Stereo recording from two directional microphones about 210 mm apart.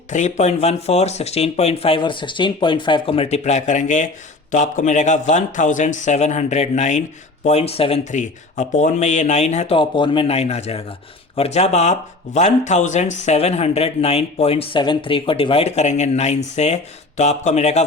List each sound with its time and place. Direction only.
0.1 s speech: 35° left (ahead or behind)